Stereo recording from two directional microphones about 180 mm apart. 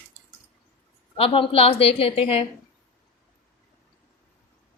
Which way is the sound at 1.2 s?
30° left (ahead or behind).